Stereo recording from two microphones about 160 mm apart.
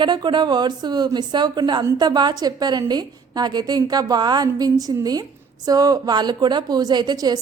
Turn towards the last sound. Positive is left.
turn(degrees=-25)  # may be behind; listen again after turning